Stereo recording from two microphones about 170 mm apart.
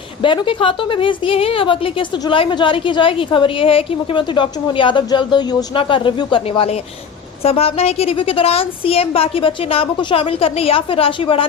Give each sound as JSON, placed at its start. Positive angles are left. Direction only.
{"t": 0.2, "sound": "a woman's voice", "side_deg": 30}